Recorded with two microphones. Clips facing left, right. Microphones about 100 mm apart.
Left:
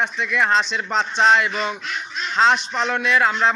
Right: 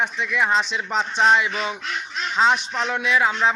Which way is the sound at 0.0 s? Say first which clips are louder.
Left 1 dB; 10° right (ahead or behind).